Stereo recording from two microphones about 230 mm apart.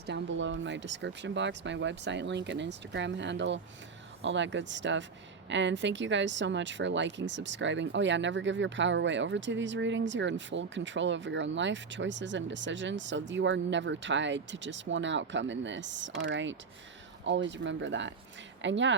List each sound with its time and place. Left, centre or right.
0.0 s speech: right